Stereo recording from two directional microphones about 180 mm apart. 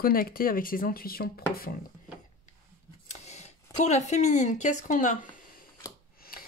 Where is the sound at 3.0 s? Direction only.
40° left (ahead or behind); by 6.5 s 55° left (ahead or behind).